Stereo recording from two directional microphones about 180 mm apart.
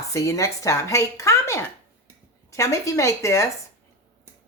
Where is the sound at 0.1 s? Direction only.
15° left (ahead or behind).